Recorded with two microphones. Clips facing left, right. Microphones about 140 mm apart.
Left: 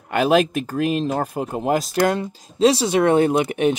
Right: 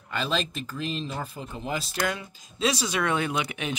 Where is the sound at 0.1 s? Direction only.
65° left (ahead or behind).